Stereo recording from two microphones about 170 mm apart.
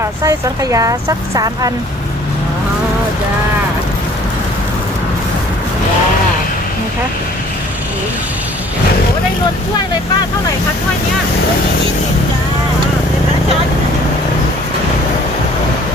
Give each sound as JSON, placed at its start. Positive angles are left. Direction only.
{"t": 0.0, "sound": "speech", "side_deg": -20}